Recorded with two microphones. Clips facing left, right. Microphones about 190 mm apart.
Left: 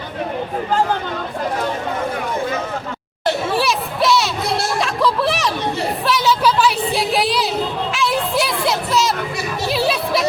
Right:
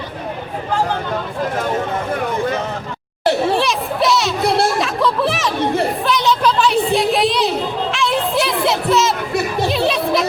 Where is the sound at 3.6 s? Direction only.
Centre (ahead or behind).